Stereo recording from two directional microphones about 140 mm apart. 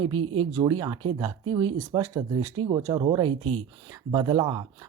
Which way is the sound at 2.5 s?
35° right (ahead or behind).